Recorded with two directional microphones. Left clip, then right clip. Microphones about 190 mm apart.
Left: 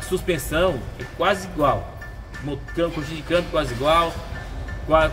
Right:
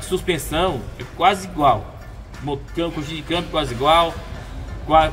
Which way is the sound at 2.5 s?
10° right (ahead or behind).